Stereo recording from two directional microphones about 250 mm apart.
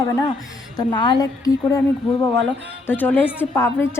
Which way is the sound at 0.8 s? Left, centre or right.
Centre.